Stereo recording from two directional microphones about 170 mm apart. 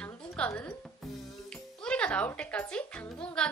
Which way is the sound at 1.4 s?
5° left (ahead or behind).